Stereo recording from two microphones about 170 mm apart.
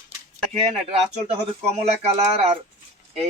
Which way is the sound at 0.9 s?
40° right (ahead or behind).